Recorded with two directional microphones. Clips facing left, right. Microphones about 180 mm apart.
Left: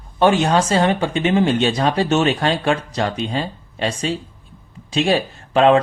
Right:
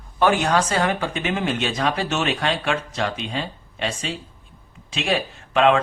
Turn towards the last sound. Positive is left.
turn(degrees=35)  # may be behind; listen again after turning